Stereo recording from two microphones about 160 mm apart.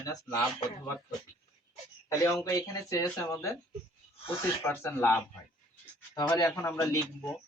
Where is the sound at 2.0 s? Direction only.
20° left (ahead or behind).